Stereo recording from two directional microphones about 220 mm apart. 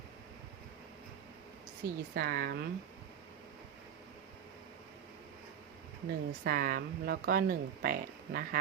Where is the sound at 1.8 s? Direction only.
45° right (ahead or behind).